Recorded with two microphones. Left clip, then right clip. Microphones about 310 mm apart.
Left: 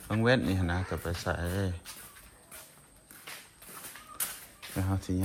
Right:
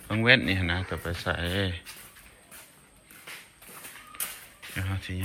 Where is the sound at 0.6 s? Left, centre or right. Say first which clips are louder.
Right 4 dB; centre.